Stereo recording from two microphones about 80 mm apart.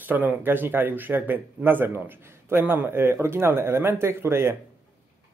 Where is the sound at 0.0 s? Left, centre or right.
Right.